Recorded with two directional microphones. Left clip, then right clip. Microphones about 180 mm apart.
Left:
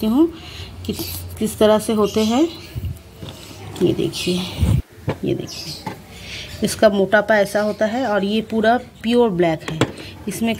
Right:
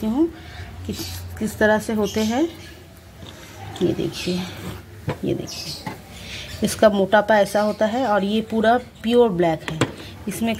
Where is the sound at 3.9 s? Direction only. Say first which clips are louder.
Left 4 dB; 10° left (ahead or behind).